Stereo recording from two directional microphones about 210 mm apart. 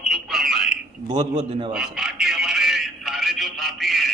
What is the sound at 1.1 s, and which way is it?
Speech, 20° right (ahead or behind).